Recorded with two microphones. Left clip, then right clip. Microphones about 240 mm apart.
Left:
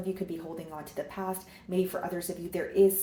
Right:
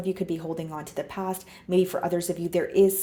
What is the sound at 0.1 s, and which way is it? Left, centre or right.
A woman's voice, right.